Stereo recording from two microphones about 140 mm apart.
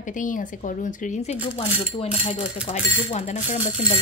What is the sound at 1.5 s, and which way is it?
Speech, 40° left (ahead or behind).